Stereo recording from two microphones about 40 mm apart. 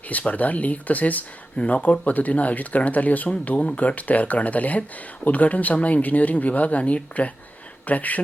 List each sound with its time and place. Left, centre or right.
0.1 s speech: left